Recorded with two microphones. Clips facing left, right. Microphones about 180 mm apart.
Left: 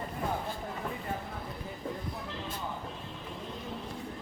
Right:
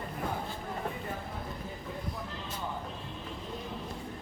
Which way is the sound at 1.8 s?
45° left (ahead or behind).